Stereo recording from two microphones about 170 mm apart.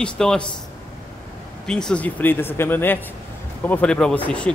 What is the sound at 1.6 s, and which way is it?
Speech, 5° left (ahead or behind).